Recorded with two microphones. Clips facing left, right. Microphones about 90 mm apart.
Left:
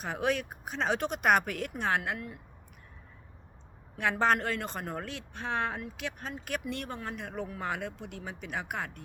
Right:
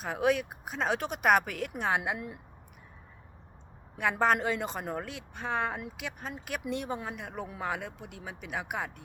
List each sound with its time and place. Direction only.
0.0 s speech: centre (ahead or behind); by 2.4 s 20° right (ahead or behind)
3.9 s speech: 5° right (ahead or behind)